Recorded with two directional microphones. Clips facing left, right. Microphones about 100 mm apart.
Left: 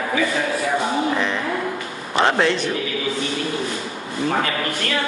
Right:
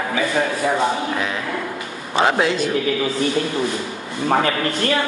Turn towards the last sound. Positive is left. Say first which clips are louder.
# right 3 dB
turn(degrees=-30)  # may be behind; listen again after turning